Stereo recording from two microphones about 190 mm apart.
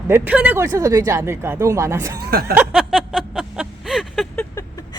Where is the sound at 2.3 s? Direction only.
55° right (ahead or behind).